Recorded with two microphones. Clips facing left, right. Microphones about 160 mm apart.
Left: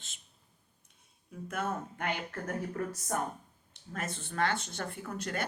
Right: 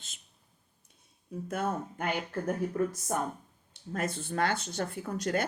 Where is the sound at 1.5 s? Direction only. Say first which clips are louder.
Right 3 dB; 35° right (ahead or behind).